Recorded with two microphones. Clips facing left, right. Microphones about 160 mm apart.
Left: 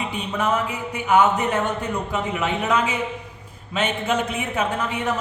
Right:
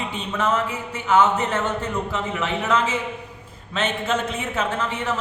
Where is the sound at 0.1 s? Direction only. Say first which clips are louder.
Right 1 dB; 10° left (ahead or behind).